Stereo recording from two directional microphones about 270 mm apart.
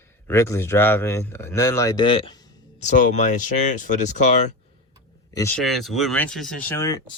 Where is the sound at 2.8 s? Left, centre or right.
Left.